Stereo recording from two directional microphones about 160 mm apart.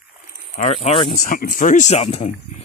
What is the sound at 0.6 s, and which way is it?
Speech, 40° left (ahead or behind).